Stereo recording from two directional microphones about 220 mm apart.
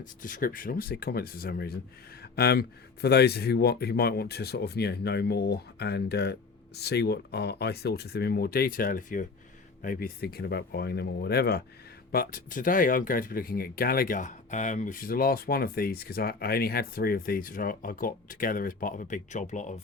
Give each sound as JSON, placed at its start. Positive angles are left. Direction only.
{"t": 0.0, "sound": "speech", "side_deg": 35}